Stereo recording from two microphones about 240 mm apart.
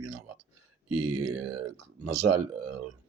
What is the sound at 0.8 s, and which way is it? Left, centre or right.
Speech, right.